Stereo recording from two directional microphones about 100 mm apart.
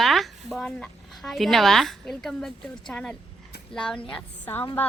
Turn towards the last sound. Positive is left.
turn(degrees=20)  # may be behind; listen again after turning